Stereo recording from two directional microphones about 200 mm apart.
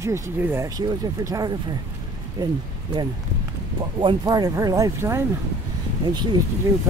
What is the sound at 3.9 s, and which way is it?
Speech, 20° right (ahead or behind).